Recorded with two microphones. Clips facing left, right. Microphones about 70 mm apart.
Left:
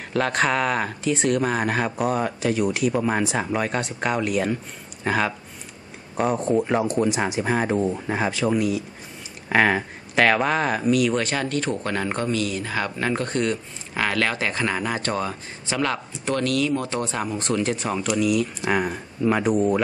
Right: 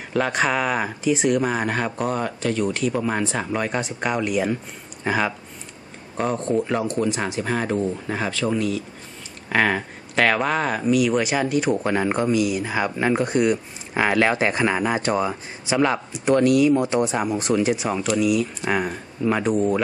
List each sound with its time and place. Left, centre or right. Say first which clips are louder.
0.1 s speech: even; centre
6.1 s speech: left 1 dB; centre